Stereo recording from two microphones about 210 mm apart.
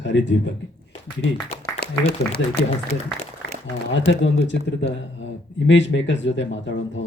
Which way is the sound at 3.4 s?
50° left (ahead or behind).